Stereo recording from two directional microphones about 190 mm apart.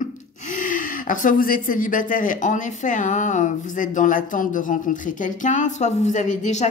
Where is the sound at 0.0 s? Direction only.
45° left (ahead or behind).